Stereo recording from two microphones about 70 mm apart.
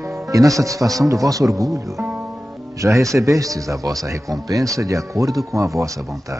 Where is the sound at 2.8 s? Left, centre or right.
Right.